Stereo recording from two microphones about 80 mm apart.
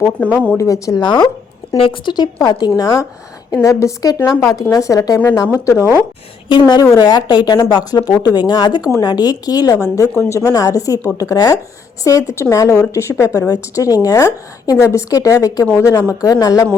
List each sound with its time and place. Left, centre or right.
0.0 s speech: centre
0.5 s a woman's voice: left
1.0 s a woman's voice: left
3.5 s a woman's voice: left
6.5 s a woman's voice: left
7.0 s a woman's voice: left
13.5 s a woman's voice: left
14.8 s a woman's voice: left
15.1 s a woman's voice: left
16.2 s a woman's voice: left